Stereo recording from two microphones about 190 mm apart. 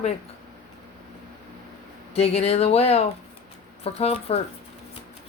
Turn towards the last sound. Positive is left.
turn(degrees=30)  # may be behind; listen again after turning